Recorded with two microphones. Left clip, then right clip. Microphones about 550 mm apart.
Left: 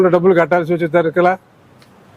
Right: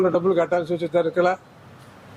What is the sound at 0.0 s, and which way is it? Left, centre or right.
A man's voice, left.